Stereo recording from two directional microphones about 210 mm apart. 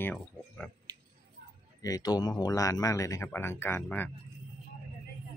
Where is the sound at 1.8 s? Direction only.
15° left (ahead or behind).